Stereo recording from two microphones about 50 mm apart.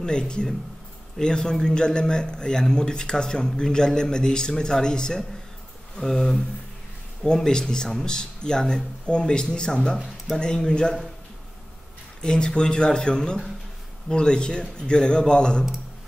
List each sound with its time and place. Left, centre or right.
0.0 s a man's voice: centre
12.2 s a man's voice: centre